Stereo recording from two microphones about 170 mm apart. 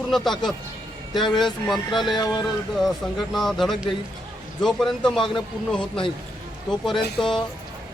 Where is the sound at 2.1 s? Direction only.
20° left (ahead or behind).